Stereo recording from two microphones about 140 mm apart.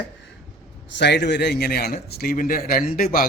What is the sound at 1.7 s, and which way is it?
A man's voice, 90° left.